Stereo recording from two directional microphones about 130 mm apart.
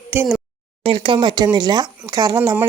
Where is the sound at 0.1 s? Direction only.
15° right (ahead or behind).